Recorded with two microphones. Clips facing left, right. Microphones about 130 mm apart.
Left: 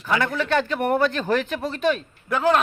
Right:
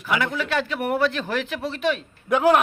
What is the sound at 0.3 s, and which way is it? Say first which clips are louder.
A man's voice: left 3 dB; 5° right (ahead or behind).